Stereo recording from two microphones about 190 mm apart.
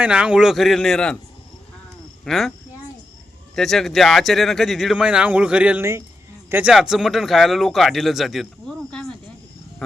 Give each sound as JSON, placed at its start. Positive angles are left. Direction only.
{"t": 0.0, "sound": "speech", "side_deg": -5}
{"t": 2.2, "sound": "speech", "side_deg": 0}
{"t": 3.5, "sound": "speech", "side_deg": 0}